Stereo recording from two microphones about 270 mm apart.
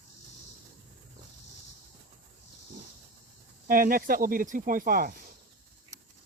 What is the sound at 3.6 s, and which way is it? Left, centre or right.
Speech, right.